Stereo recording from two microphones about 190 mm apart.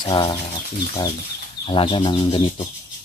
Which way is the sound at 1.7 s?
25° left (ahead or behind).